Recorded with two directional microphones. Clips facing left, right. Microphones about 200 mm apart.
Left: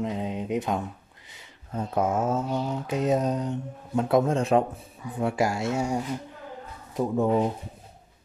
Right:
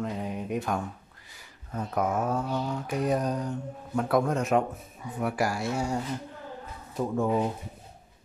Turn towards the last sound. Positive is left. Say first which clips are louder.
# left 3 dB
turn(degrees=20)  # may be behind; listen again after turning